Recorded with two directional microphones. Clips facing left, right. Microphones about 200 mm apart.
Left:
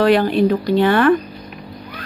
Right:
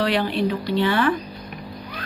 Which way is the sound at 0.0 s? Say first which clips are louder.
Left 7 dB; 45° left (ahead or behind).